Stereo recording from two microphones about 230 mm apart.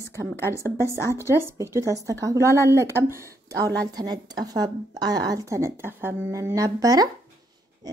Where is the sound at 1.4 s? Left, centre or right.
Centre.